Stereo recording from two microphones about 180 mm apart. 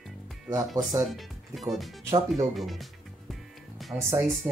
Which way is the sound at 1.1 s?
Centre (ahead or behind).